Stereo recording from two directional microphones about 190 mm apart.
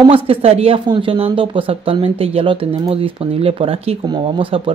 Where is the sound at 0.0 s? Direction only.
30° right (ahead or behind).